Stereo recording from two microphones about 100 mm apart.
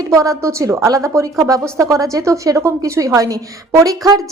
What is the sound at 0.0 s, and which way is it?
A woman's voice, 35° right (ahead or behind).